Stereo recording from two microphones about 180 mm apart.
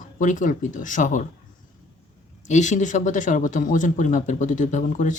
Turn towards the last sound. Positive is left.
turn(degrees=45)  # may be behind; listen again after turning